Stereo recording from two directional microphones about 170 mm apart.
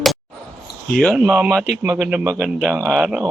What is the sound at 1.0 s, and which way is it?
Speech, centre (ahead or behind).